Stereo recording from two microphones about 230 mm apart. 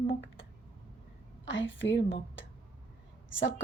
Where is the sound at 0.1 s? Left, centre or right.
Left.